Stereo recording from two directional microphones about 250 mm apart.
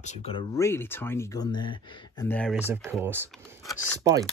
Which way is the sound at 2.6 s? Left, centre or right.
Centre.